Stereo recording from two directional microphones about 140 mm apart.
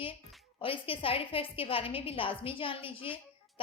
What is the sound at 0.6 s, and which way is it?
A woman's voice, 40° left (ahead or behind).